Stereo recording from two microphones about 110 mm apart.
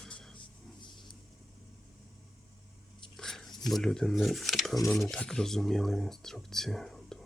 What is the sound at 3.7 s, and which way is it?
Speech, 5° left (ahead or behind).